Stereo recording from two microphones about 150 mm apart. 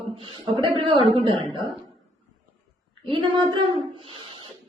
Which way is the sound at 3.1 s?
35° right (ahead or behind).